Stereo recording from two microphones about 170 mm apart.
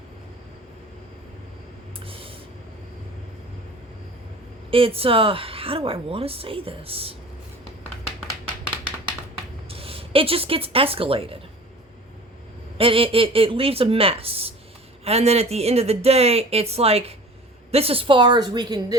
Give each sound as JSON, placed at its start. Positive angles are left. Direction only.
{"t": 2.0, "sound": "a sound", "side_deg": -35}
{"t": 4.7, "sound": "a woman's voice", "side_deg": -35}
{"t": 9.6, "sound": "speech", "side_deg": -35}
{"t": 12.7, "sound": "a woman's voice", "side_deg": -30}